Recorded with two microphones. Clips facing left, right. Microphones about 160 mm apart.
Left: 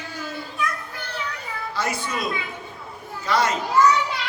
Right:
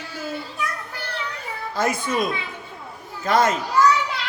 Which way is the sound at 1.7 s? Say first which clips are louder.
Right 5 dB; 50° right (ahead or behind).